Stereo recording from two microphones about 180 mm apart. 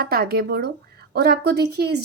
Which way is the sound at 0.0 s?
60° right (ahead or behind).